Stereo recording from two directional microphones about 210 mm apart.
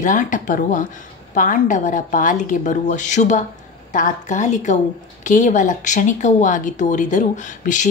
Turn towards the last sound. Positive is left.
turn(degrees=35)  # may be behind; listen again after turning